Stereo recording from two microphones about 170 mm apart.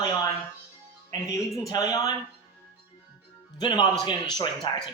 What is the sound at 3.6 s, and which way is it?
Speech, 25° left (ahead or behind).